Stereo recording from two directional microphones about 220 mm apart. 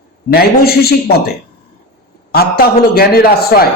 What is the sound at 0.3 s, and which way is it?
Speech, 45° left (ahead or behind).